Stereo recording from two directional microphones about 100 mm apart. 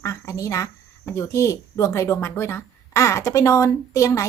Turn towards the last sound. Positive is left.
turn(degrees=30)  # may be behind; listen again after turning